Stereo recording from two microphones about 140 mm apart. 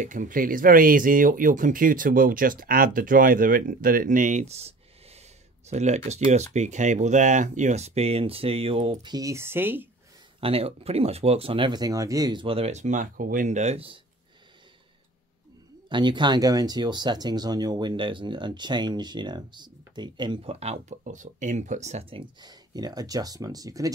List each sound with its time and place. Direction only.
0.0 s speech: 65° right (ahead or behind); by 9.8 s 15° right (ahead or behind)
10.4 s speech: 45° right (ahead or behind)
15.9 s speech: 35° right (ahead or behind)
20.5 s speech: 50° right (ahead or behind)
22.2 s speech: 30° right (ahead or behind)